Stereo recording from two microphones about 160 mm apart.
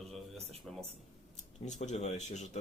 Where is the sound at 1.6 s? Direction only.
50° left (ahead or behind).